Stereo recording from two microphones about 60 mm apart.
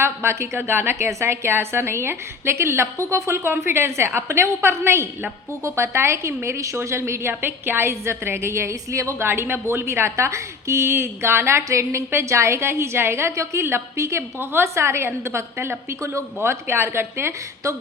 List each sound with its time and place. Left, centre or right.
0.0 s a woman's voice: right
9.2 s a woman's voice: right
14.3 s a woman's voice: right